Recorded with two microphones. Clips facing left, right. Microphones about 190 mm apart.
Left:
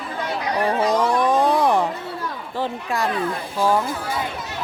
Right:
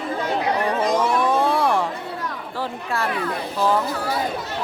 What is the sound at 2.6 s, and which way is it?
Speech, 15° left (ahead or behind).